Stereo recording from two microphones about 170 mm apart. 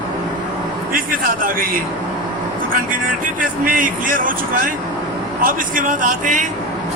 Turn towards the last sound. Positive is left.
turn(degrees=-50)  # may be behind; listen again after turning